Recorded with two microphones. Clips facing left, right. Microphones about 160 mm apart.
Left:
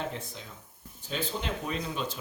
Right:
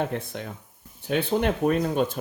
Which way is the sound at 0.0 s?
60° right (ahead or behind).